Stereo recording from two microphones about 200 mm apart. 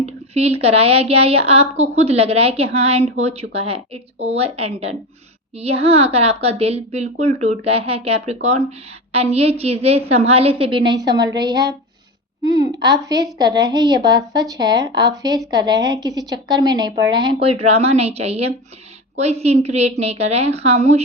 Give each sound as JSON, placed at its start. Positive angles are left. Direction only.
{"t": 0.0, "sound": "a woman's voice", "side_deg": -30}